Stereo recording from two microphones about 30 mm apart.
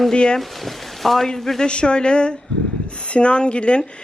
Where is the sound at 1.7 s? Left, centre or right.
Left.